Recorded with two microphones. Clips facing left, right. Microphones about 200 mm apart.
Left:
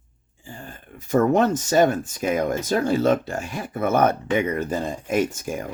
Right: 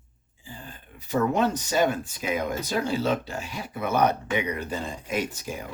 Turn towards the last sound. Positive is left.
turn(degrees=50)  # may be behind; listen again after turning